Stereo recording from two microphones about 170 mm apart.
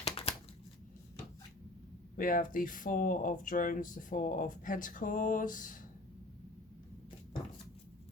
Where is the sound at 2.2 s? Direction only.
55° left (ahead or behind).